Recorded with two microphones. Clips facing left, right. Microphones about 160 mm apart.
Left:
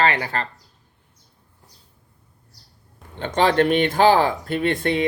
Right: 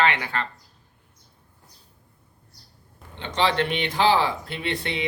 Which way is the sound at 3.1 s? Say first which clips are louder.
Left 5 dB; 45° left (ahead or behind).